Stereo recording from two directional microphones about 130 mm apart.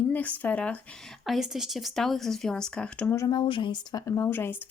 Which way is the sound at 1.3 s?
5° right (ahead or behind).